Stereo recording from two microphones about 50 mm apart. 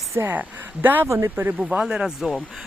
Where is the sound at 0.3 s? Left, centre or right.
Right.